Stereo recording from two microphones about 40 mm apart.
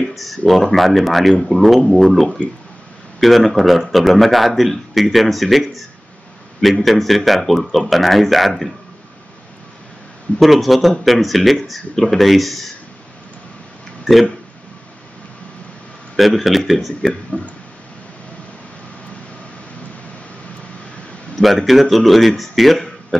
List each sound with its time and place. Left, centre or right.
0.1 s a man's voice: centre
10.4 s a man's voice: centre
16.2 s a man's voice: centre
17.3 s speech: left
21.4 s a man's voice: centre